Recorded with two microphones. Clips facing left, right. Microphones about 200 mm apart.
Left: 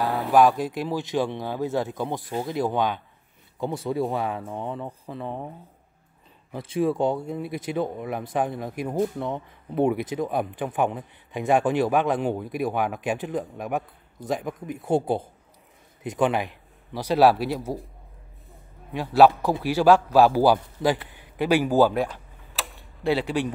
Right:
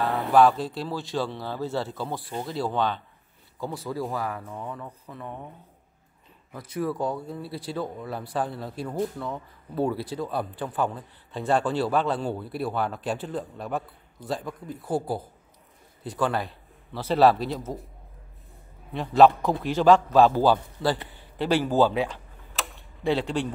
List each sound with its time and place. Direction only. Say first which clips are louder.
0.0 s a sound: left 1 dB; centre (ahead or behind)
0.3 s speech: left 1 dB; 15° left (ahead or behind); by 5.5 s 30° left (ahead or behind)
6.5 s a man's voice: left 5 dB; 25° left (ahead or behind); by 17.7 s 10° left (ahead or behind)
18.9 s speech: left 1 dB; 10° left (ahead or behind)
22.5 s tick-tock: even; centre (ahead or behind)